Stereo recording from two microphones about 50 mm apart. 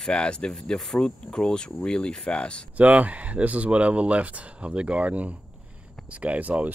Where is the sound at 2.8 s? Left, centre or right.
Right.